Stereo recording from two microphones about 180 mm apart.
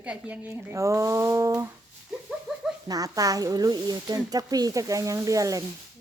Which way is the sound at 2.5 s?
5° right (ahead or behind).